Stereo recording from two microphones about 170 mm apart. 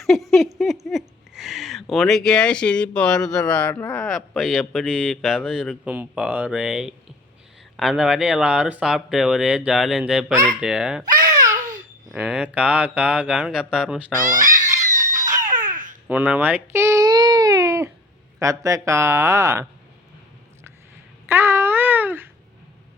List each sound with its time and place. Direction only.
0.0 s a sound: centre (ahead or behind)
11.0 s babbling: 20° right (ahead or behind)
12.1 s speech: 5° right (ahead or behind)
14.4 s a sound: 50° right (ahead or behind)
15.1 s a sound: 15° right (ahead or behind)
15.6 s babbling: 50° right (ahead or behind)
16.0 s baby cry: 10° right (ahead or behind)
18.3 s speech: 20° right (ahead or behind)
21.2 s babbling: 15° right (ahead or behind)